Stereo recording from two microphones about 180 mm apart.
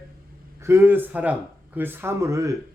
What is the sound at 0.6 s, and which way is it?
Speech, 15° right (ahead or behind).